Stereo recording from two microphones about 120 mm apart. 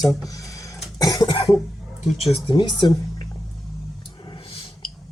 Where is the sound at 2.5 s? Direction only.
40° left (ahead or behind).